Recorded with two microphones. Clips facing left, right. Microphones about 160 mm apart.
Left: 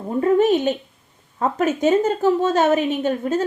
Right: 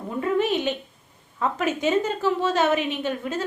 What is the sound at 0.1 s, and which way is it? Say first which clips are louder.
A woman's voice: left 7 dB; 40° left (ahead or behind).